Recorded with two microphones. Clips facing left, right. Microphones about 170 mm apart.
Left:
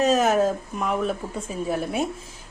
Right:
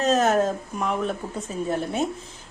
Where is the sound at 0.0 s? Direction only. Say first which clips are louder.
Left 1 dB; 10° left (ahead or behind).